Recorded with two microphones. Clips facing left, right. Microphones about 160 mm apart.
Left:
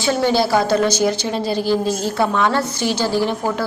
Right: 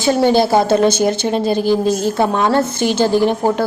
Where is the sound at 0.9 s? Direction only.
55° right (ahead or behind).